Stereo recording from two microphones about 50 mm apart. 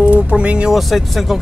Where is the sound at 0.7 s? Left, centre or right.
Centre.